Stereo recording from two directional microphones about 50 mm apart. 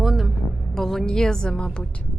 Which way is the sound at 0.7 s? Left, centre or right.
Centre.